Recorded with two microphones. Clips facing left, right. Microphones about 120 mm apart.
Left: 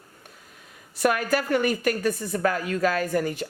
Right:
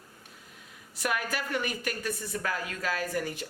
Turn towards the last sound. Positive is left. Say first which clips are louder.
# left 7 dB
turn(degrees=50)  # may be behind; listen again after turning